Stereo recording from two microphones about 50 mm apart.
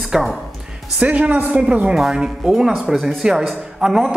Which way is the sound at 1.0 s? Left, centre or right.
Right.